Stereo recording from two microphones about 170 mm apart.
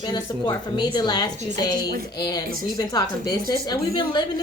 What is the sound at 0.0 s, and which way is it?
A woman's voice, 25° left (ahead or behind).